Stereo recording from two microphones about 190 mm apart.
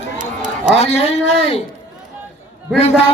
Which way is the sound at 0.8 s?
35° left (ahead or behind).